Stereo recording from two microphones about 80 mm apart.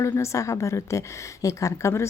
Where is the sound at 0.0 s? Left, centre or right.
Left.